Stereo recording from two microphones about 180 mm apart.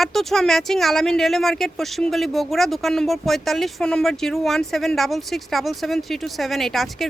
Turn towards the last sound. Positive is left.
turn(degrees=0)  # may be behind; listen again after turning